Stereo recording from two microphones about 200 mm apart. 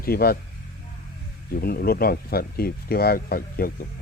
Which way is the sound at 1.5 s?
50° left (ahead or behind).